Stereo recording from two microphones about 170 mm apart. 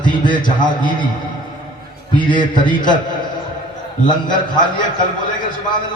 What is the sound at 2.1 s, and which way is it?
Speech, 25° left (ahead or behind).